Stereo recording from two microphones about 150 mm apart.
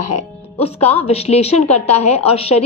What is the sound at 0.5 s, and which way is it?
A woman's voice, 45° left (ahead or behind).